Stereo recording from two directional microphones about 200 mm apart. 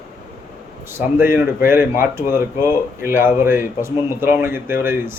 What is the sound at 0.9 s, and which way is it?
Speech, 10° right (ahead or behind).